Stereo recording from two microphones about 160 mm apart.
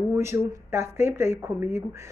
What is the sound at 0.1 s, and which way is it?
A woman's voice, 15° right (ahead or behind).